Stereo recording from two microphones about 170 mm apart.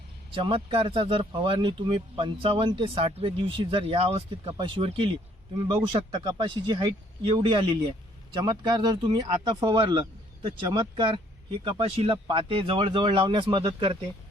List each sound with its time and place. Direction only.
0.3 s speech: 30° right (ahead or behind)